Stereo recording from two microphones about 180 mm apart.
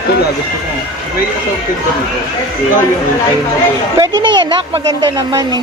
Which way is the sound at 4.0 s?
25° right (ahead or behind).